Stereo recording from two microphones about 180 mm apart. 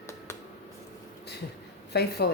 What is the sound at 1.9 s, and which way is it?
Speech, 65° left (ahead or behind).